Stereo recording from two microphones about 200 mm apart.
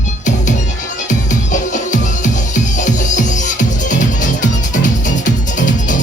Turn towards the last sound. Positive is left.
turn(degrees=40)  # may be behind; listen again after turning